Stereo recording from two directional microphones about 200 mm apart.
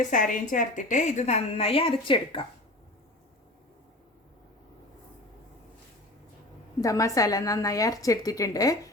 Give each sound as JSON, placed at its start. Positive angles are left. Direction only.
{"t": 0.0, "sound": "a woman's voice", "side_deg": 40}
{"t": 6.8, "sound": "speech", "side_deg": 15}